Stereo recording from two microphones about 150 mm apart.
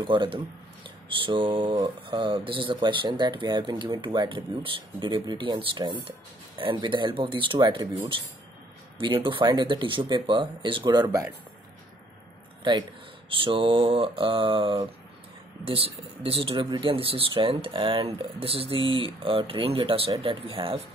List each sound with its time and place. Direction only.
0.0 s speech: 35° right (ahead or behind)
12.7 s speech: 30° right (ahead or behind)